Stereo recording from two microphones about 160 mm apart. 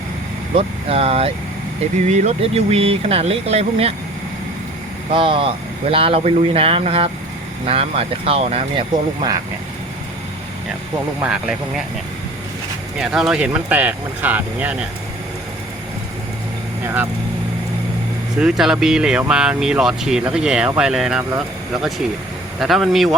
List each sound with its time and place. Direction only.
0.5 s speech: 35° right (ahead or behind)
5.1 s speech: 30° right (ahead or behind)
8.9 s speech: 25° right (ahead or behind)
11.2 s speech: 5° right (ahead or behind)
13.0 s speech: 5° right (ahead or behind)
16.8 s speech: 10° right (ahead or behind)
18.3 s speech: 5° right (ahead or behind)